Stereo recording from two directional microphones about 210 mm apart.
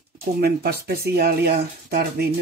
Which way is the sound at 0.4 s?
45° right (ahead or behind).